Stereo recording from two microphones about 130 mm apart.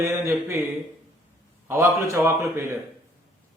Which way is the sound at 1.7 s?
20° right (ahead or behind).